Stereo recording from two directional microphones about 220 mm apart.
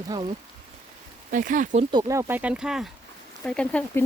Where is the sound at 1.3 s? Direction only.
35° right (ahead or behind).